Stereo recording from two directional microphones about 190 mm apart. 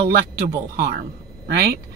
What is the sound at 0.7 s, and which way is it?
Speech, 55° right (ahead or behind).